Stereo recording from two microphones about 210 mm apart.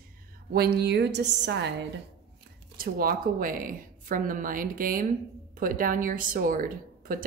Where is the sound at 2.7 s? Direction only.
45° right (ahead or behind).